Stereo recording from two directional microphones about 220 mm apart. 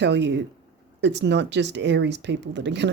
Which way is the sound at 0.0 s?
50° right (ahead or behind).